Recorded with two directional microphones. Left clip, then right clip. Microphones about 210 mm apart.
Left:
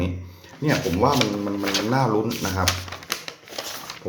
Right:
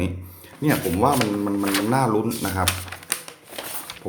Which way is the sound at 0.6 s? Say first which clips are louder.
Even; 20° right (ahead or behind).